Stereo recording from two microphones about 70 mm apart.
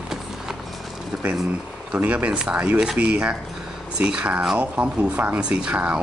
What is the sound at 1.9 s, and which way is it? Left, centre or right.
Speech, centre.